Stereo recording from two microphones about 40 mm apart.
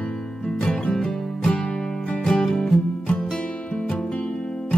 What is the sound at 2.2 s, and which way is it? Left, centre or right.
Music, centre.